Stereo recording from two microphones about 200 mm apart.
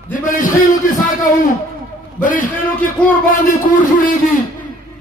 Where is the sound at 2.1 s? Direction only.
45° left (ahead or behind).